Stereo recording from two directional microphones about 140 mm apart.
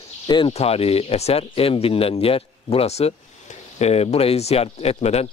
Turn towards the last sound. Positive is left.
turn(degrees=50)  # may be behind; listen again after turning